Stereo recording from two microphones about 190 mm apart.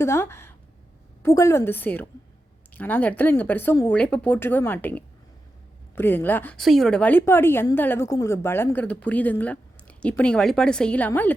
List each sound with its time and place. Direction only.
0.0 s a woman's voice: 15° left (ahead or behind)